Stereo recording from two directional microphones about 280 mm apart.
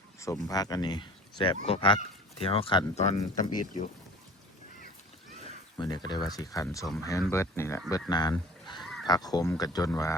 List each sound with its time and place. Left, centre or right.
0.2 s speech: centre
5.7 s speech: centre
8.8 s honk: centre
9.0 s speech: centre